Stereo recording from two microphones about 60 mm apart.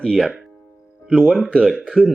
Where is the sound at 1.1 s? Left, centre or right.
Right.